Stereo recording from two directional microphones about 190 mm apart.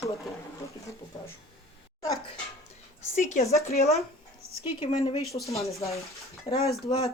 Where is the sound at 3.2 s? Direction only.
40° left (ahead or behind).